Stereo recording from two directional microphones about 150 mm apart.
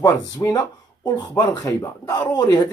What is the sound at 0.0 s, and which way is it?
Speech, 25° left (ahead or behind).